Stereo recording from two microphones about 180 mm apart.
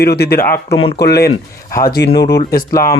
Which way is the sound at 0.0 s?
60° left (ahead or behind).